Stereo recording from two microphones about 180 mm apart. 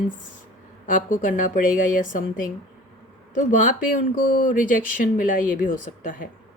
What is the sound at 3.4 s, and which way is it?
Speech, 45° left (ahead or behind).